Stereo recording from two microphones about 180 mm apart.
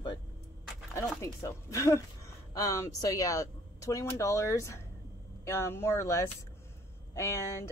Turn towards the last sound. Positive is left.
turn(degrees=15)  # may be behind; listen again after turning